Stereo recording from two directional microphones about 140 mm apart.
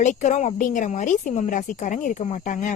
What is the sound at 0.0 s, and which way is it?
Speech, 60° left (ahead or behind).